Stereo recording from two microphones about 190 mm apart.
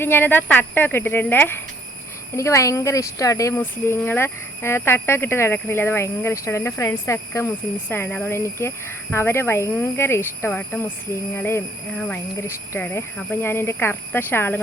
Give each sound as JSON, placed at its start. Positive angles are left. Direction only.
{"t": 0.0, "sound": "speech", "side_deg": 10}